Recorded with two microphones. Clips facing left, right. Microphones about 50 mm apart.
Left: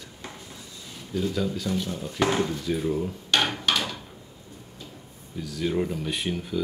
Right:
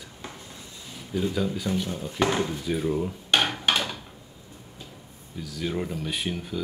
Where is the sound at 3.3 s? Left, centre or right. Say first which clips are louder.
Right 1 dB; right.